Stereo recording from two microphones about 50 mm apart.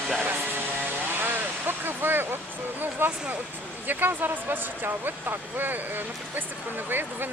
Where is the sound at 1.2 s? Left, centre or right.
Right.